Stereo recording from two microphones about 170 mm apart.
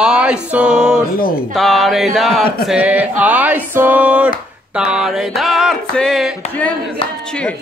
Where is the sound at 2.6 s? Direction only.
10° right (ahead or behind).